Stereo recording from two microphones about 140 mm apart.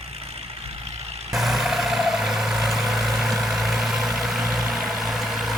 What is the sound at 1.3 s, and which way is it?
Vehicle, centre (ahead or behind).